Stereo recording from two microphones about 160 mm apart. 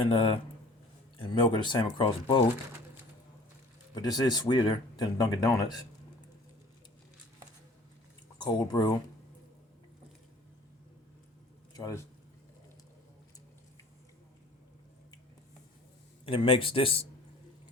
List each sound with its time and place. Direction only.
0.1 s speech: 35° left (ahead or behind)
3.9 s speech: 25° left (ahead or behind)
8.4 s speech: 25° left (ahead or behind)
11.7 s speech: 20° left (ahead or behind)
16.2 s speech: 35° left (ahead or behind)